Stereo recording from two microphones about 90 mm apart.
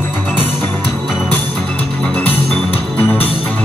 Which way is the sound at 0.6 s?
15° left (ahead or behind).